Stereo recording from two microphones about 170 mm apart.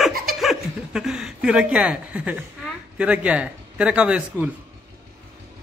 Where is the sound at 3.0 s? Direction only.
5° right (ahead or behind).